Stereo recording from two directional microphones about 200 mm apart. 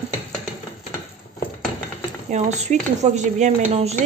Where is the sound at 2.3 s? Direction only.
35° right (ahead or behind).